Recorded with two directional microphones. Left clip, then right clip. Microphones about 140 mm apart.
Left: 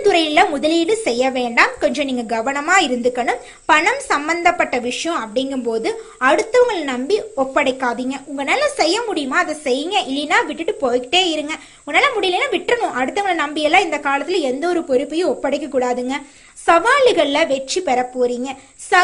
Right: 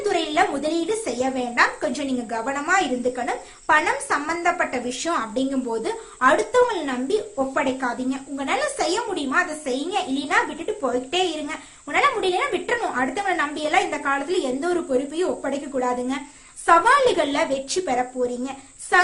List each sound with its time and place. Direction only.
0.0 s speech: 35° left (ahead or behind)
4.9 s speech: 20° left (ahead or behind)